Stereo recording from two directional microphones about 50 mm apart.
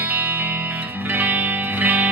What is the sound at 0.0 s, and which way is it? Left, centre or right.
Music, right.